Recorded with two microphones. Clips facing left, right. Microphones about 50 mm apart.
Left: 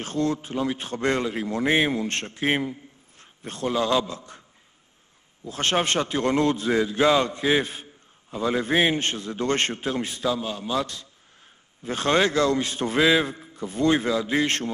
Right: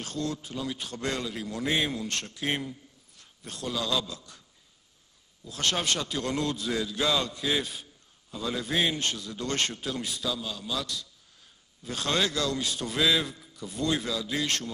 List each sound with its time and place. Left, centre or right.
0.0 s a man's voice: left
5.4 s a man's voice: left